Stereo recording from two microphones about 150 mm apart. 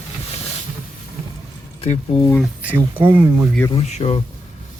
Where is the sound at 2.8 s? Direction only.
35° right (ahead or behind).